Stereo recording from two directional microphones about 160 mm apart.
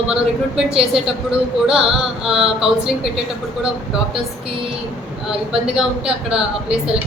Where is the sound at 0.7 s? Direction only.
35° right (ahead or behind).